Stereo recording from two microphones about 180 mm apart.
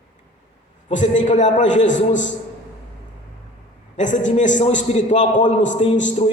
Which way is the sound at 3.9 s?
45° left (ahead or behind).